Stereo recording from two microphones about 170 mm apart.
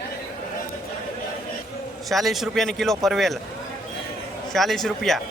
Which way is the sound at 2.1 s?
Centre (ahead or behind).